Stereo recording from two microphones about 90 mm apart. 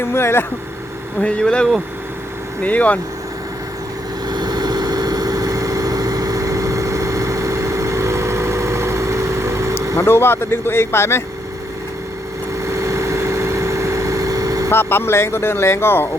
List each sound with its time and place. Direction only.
0.0 s speech: 25° left (ahead or behind)
1.2 s speech: 10° left (ahead or behind)
4.3 s vehicle: 50° right (ahead or behind); by 9.7 s 30° right (ahead or behind)
10.0 s speech: 25° left (ahead or behind)
12.6 s vehicle: 35° right (ahead or behind)
14.7 s speech: 25° left (ahead or behind)